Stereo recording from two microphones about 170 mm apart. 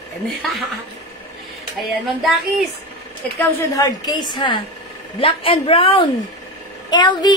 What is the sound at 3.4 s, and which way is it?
A woman's voice, 20° left (ahead or behind).